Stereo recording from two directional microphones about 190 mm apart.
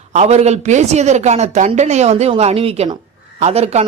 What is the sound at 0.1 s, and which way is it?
A man's voice, 35° right (ahead or behind).